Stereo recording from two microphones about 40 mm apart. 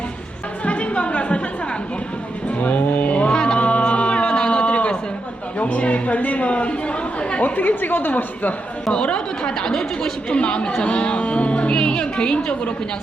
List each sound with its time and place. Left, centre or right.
0.6 s a sound: left
2.6 s mantra: left
3.3 s music: left
3.6 s music: left
5.5 s speech: left
7.4 s a woman's voice: left
8.9 s speech: left